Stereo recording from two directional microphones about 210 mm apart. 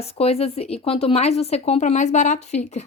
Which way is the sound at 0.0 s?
30° left (ahead or behind).